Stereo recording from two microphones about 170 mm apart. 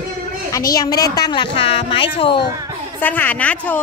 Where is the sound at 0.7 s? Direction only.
20° left (ahead or behind).